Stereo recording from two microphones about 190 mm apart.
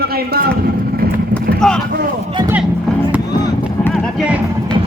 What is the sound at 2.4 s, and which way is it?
Music, 20° right (ahead or behind).